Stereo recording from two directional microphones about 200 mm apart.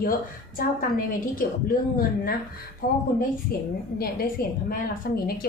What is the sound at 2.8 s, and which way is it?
A woman's voice, 45° left (ahead or behind).